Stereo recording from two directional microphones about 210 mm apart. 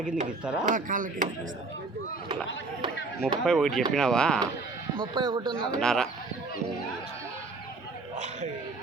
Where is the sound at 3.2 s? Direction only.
Centre (ahead or behind).